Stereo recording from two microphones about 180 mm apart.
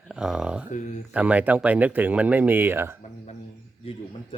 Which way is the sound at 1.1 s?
5° right (ahead or behind).